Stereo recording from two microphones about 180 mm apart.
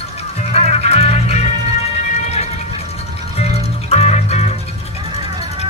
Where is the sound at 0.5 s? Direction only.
35° left (ahead or behind).